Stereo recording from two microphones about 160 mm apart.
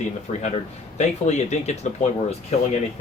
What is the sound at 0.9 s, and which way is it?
Speech, 45° left (ahead or behind).